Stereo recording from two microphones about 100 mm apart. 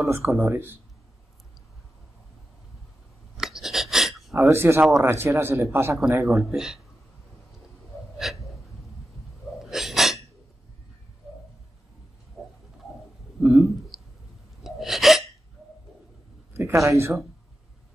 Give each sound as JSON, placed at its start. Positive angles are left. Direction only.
{"t": 0.1, "sound": "speech", "side_deg": -25}
{"t": 3.3, "sound": "a sound", "side_deg": -5}
{"t": 4.4, "sound": "speech", "side_deg": -25}
{"t": 6.5, "sound": "speech", "side_deg": -5}
{"t": 8.2, "sound": "hiccup", "side_deg": -5}
{"t": 9.6, "sound": "sneeze", "side_deg": -5}
{"t": 11.3, "sound": "a sound", "side_deg": -5}
{"t": 13.4, "sound": "speech", "side_deg": -25}
{"t": 13.9, "sound": "clicking", "side_deg": 0}
{"t": 14.6, "sound": "gasp", "side_deg": -5}
{"t": 16.5, "sound": "speech", "side_deg": -30}